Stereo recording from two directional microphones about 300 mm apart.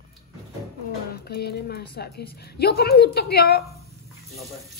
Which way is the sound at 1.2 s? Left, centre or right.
Left.